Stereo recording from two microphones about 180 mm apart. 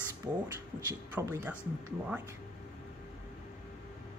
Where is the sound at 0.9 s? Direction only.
15° right (ahead or behind).